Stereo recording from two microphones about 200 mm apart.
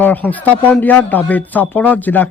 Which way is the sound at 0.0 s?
10° left (ahead or behind).